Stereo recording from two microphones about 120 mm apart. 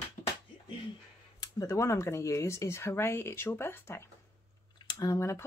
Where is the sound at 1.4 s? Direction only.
25° left (ahead or behind).